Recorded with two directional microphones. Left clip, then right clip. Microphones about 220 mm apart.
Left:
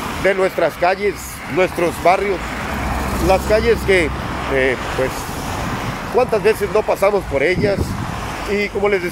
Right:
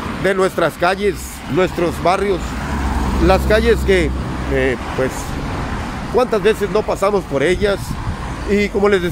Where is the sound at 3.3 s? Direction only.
15° right (ahead or behind).